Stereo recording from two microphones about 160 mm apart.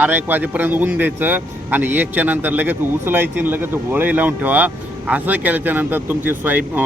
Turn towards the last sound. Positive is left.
turn(degrees=-10)  # may be behind; listen again after turning